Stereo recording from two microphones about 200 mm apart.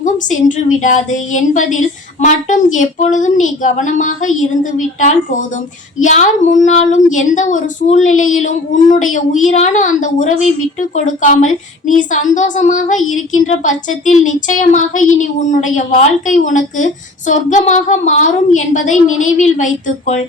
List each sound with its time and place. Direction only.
0.0 s a woman's voice: 40° left (ahead or behind)